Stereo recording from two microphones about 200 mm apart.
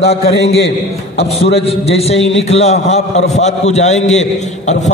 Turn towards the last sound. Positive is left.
turn(degrees=35)  # may be behind; listen again after turning